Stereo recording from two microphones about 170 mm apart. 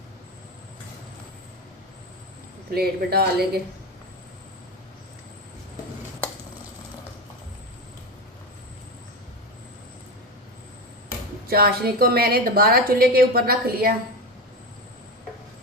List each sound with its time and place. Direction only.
2.7 s speech: 65° right (ahead or behind)
11.4 s a woman's voice: 65° right (ahead or behind)